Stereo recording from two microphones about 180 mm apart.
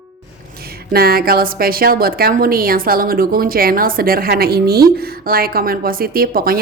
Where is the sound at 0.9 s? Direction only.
55° right (ahead or behind).